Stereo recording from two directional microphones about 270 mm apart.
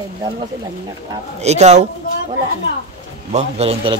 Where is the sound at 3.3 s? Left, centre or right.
Right.